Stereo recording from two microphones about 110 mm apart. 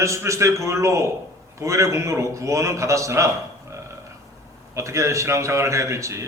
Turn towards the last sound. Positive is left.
turn(degrees=-25)  # may be behind; listen again after turning